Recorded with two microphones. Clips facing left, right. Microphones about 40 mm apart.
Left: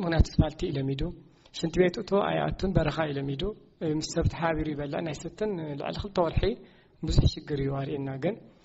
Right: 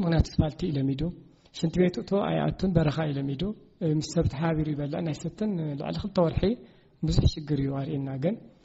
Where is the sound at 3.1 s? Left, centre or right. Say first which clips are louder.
Right 1 dB; centre.